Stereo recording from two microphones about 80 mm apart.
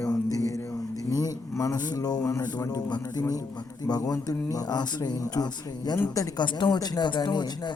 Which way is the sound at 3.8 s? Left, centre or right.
Left.